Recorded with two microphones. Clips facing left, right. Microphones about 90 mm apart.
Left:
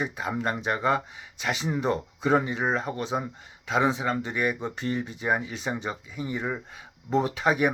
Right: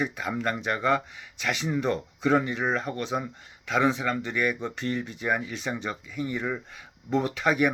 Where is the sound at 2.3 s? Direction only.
15° left (ahead or behind).